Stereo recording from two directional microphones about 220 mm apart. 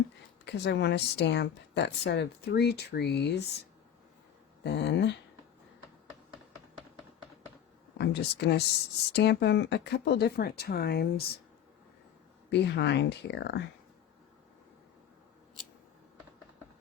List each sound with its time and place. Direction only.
0.4 s speech: 50° left (ahead or behind)
4.6 s speech: 50° left (ahead or behind)
7.9 s speech: 50° left (ahead or behind)
12.5 s speech: 50° left (ahead or behind)